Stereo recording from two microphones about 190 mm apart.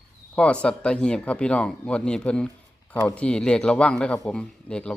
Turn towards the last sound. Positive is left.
turn(degrees=5)  # may be behind; listen again after turning